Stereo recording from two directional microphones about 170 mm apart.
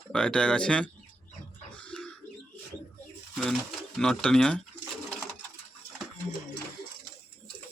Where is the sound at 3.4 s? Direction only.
Centre (ahead or behind).